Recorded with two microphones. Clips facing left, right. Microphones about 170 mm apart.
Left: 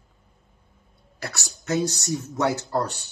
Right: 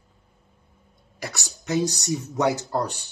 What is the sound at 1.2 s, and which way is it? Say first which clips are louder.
Speech: even; 15° right (ahead or behind).